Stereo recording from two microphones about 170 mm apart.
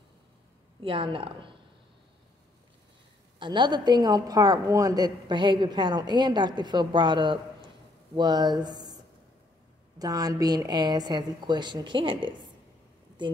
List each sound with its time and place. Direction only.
0.8 s speech: 30° right (ahead or behind)
3.3 s a woman's voice: 25° right (ahead or behind)
9.9 s a woman's voice: 20° right (ahead or behind)